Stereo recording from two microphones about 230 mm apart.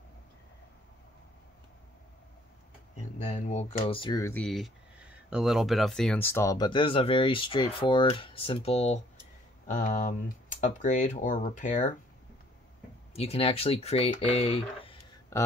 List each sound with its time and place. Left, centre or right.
3.3 s speech: left
13.1 s speech: left